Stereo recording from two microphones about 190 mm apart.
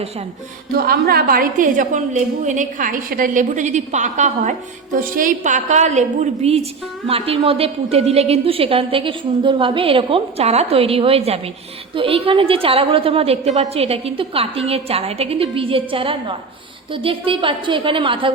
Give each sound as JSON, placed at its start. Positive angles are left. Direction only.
{"t": 0.7, "sound": "a woman's voice", "side_deg": -55}